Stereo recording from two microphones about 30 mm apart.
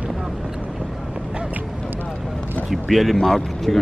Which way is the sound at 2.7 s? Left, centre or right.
Centre.